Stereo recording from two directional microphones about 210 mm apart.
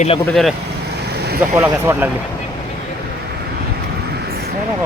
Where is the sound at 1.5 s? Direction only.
10° right (ahead or behind).